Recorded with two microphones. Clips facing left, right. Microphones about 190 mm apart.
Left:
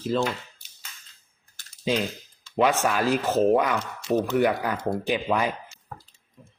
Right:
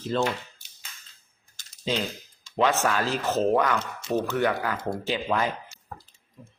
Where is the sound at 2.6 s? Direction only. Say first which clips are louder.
Left 1 dB; 10° left (ahead or behind).